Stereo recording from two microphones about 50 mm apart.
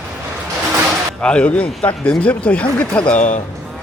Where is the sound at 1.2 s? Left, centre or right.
Left.